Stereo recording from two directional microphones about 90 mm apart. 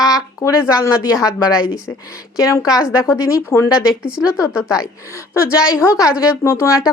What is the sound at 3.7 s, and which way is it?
Speech, 10° right (ahead or behind).